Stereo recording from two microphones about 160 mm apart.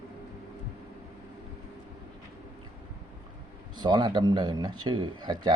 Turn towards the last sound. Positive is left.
turn(degrees=-30)  # may be behind; listen again after turning